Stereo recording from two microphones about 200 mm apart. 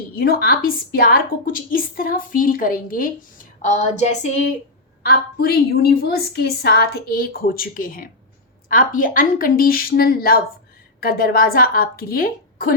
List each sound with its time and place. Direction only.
0.2 s a woman's voice: 50° left (ahead or behind)
5.0 s a woman's voice: 50° left (ahead or behind)